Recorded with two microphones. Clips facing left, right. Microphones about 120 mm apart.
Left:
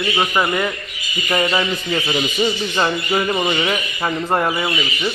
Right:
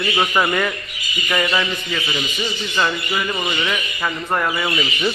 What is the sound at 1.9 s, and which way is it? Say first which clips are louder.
Speech: left 7 dB; 35° left (ahead or behind).